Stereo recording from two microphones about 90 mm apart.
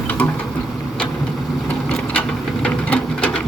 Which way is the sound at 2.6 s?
15° left (ahead or behind).